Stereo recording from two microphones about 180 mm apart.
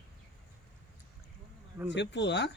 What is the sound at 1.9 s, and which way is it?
Speech, 75° left (ahead or behind).